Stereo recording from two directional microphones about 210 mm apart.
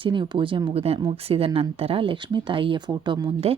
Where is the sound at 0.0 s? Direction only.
25° right (ahead or behind).